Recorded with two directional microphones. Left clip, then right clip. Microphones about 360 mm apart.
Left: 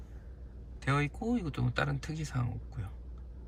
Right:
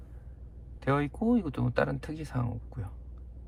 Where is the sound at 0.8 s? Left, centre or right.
Centre.